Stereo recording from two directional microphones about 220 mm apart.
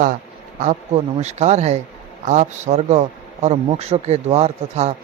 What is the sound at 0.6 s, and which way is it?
A man's voice, 30° right (ahead or behind).